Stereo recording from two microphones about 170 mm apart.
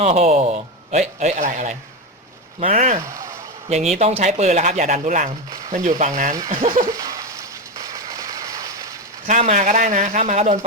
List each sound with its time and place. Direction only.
0.0 s a man's voice: 40° right (ahead or behind)
6.5 s speech: 30° right (ahead or behind)
6.9 s a sound: 20° right (ahead or behind)
9.2 s a man's voice: 45° right (ahead or behind)